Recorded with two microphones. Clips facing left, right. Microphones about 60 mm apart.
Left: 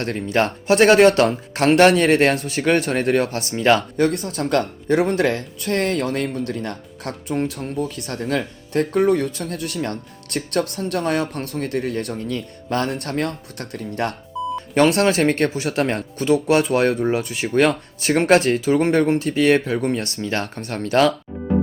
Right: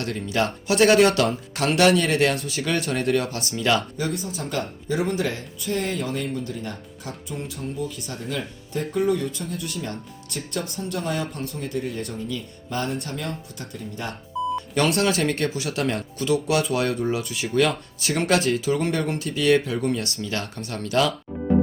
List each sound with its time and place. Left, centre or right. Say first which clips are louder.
0.0 s speech: left 4 dB; left
3.8 s speech: left 7 dB; left
14.8 s speech: left 6 dB; left
19.0 s speech: left 5 dB; left